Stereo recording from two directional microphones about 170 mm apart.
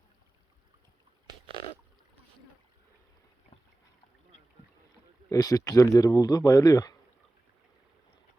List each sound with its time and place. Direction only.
5.3 s speech: 20° left (ahead or behind)